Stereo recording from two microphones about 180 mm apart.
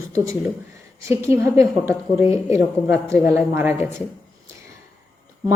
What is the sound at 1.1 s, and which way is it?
A woman's voice, 15° right (ahead or behind).